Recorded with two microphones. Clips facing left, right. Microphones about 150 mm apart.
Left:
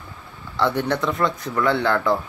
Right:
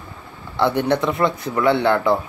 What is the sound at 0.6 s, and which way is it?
Speech, 5° right (ahead or behind).